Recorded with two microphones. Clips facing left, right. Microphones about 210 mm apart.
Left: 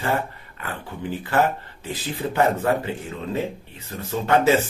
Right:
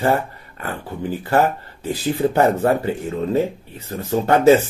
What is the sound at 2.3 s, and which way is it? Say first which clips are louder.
Speech: right 1 dB; 40° right (ahead or behind).